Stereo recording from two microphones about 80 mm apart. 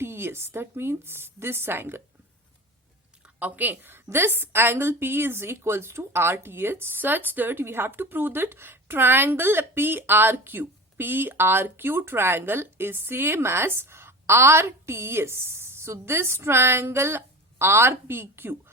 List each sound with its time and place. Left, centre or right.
0.0 s a woman's voice: right
3.2 s a woman's voice: right